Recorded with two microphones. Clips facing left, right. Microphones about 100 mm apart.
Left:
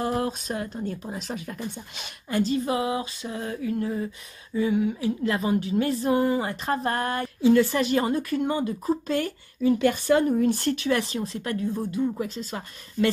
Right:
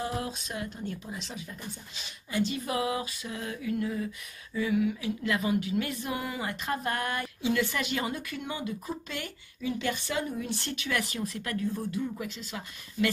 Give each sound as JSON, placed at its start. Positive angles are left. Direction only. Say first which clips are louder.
{"t": 0.0, "sound": "speech", "louder": "left 7 dB", "side_deg": 45}
{"t": 2.4, "sound": "speech", "louder": "left 5 dB", "side_deg": 30}